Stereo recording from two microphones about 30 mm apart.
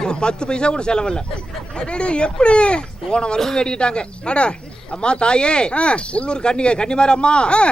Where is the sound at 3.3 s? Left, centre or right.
Left.